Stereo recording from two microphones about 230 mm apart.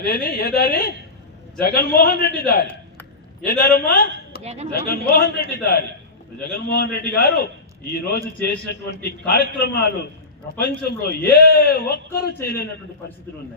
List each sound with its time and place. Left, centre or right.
0.0 s a man's voice: left
4.4 s speech: right
4.7 s a man's voice: left